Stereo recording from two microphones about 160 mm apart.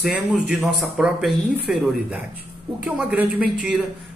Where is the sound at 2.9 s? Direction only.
5° right (ahead or behind).